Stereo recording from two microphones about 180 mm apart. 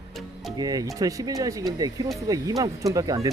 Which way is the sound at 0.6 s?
20° right (ahead or behind).